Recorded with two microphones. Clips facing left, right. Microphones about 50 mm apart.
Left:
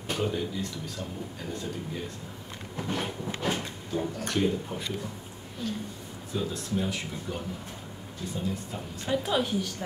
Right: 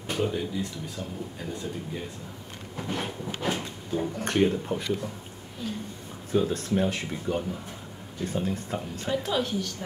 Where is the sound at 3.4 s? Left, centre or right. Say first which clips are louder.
Right 2 dB; centre.